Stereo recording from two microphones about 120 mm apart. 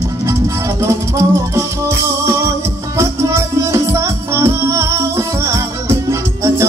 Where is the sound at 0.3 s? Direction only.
25° right (ahead or behind).